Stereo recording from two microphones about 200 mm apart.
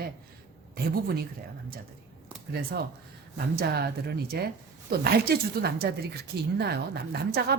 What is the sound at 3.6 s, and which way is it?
Speech, 50° right (ahead or behind).